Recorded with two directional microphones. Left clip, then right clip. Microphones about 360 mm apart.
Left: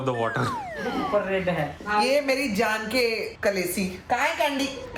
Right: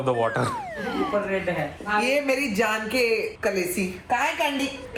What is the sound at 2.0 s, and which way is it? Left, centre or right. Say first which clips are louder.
Speech: left 1 dB; left.